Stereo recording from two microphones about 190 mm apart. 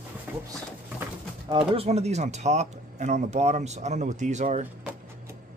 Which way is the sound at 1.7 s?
30° right (ahead or behind).